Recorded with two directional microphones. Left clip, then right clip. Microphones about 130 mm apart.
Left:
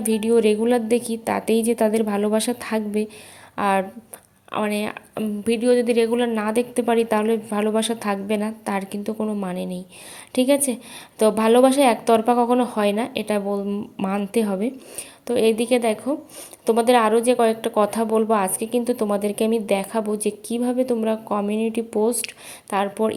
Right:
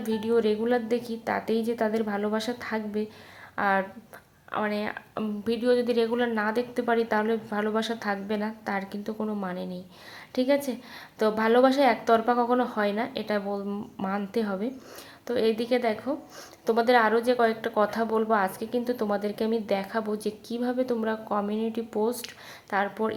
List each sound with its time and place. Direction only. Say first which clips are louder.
0.0 s a woman's voice: left 7 dB; 40° left (ahead or behind)
5.1 s speech: left 7 dB; 35° left (ahead or behind)
9.1 s speech: left 5 dB; 25° left (ahead or behind)
9.4 s a woman's voice: left 5 dB; 40° left (ahead or behind)